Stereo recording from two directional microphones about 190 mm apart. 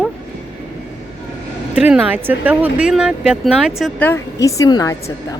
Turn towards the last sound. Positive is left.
turn(degrees=20)  # may be behind; listen again after turning